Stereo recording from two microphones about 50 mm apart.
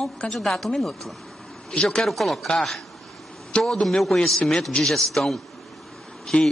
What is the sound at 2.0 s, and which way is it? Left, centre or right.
A man's voice, centre.